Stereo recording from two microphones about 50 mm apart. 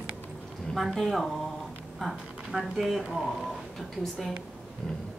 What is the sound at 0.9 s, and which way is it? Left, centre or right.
Speech, centre.